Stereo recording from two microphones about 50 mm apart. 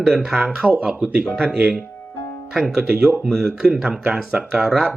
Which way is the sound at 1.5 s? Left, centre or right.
Right.